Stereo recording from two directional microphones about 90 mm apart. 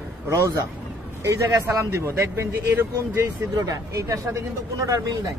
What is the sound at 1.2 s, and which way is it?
Speech, 35° right (ahead or behind).